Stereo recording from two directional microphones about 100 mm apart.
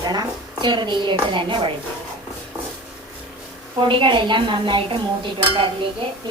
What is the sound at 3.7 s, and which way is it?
A woman's voice, 55° right (ahead or behind).